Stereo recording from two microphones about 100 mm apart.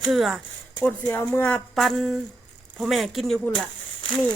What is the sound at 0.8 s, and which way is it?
Speech, 20° left (ahead or behind).